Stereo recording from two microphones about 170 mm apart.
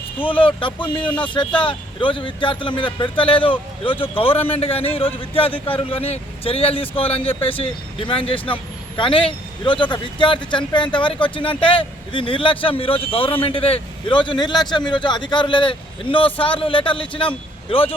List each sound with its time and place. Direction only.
0.3 s speech: 30° left (ahead or behind)